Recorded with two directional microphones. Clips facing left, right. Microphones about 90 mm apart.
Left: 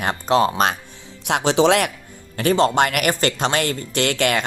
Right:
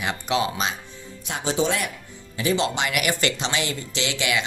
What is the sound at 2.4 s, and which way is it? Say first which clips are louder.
Speech: left 7 dB; 50° left (ahead or behind).